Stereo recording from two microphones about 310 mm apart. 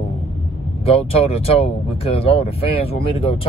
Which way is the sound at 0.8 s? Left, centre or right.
Centre.